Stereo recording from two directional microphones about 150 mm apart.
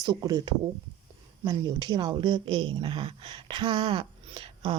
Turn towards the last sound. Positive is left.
turn(degrees=-35)  # may be behind; listen again after turning